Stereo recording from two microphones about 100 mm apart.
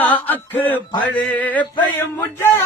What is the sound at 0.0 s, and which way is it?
Male singing, 15° left (ahead or behind).